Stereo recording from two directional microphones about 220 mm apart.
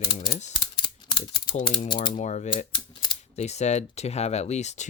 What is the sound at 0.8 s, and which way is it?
Mechanisms, 20° left (ahead or behind).